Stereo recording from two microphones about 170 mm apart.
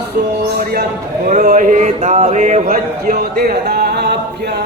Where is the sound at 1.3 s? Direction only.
45° right (ahead or behind); by 4.2 s 75° right (ahead or behind).